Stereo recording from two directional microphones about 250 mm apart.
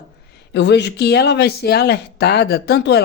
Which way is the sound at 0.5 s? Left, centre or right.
Left.